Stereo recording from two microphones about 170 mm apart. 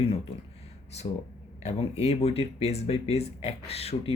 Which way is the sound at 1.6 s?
40° left (ahead or behind).